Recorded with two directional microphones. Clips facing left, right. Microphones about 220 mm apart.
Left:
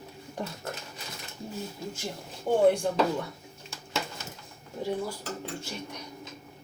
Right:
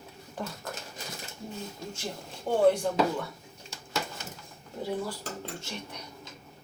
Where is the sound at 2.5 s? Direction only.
15° left (ahead or behind).